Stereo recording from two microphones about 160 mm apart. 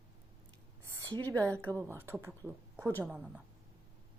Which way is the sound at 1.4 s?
10° left (ahead or behind).